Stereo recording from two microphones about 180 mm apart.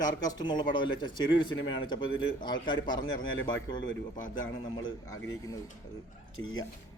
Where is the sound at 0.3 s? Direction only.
25° left (ahead or behind).